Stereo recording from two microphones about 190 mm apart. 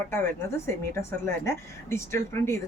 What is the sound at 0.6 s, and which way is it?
Speech, 15° left (ahead or behind).